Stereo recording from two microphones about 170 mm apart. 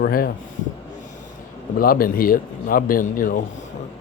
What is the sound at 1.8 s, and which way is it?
Speech, 55° left (ahead or behind).